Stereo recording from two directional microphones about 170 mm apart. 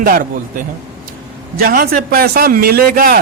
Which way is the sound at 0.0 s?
60° right (ahead or behind).